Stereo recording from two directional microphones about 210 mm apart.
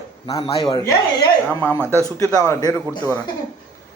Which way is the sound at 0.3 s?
15° left (ahead or behind).